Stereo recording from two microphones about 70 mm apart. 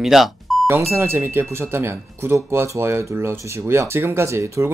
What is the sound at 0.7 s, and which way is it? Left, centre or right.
Speech, right.